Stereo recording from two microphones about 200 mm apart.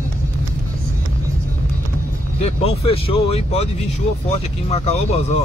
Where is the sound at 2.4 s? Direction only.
30° left (ahead or behind).